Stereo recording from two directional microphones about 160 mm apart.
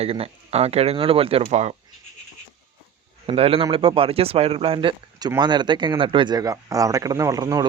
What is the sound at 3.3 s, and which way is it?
Speech, 35° right (ahead or behind).